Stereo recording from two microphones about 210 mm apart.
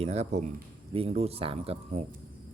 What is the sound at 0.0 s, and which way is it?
Speech, 30° right (ahead or behind).